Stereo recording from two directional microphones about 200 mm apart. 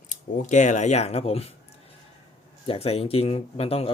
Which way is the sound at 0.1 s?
40° left (ahead or behind).